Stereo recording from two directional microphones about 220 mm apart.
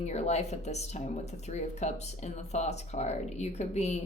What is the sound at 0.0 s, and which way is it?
A woman's voice, 30° left (ahead or behind).